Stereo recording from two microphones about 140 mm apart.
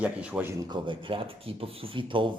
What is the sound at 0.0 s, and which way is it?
Speech, 10° right (ahead or behind).